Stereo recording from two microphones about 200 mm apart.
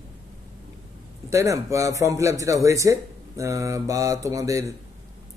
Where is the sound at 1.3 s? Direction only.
15° right (ahead or behind).